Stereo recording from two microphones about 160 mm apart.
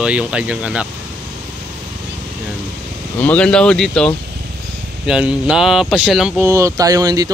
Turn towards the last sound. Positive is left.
turn(degrees=-20)  # may be behind; listen again after turning